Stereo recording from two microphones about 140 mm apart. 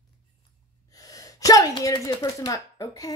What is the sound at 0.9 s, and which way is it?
Speech, 25° left (ahead or behind).